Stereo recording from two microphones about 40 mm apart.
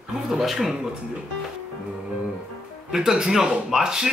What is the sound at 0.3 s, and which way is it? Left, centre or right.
Speech, centre.